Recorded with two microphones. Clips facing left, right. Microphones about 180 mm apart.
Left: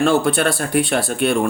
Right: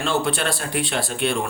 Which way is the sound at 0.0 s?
55° left (ahead or behind).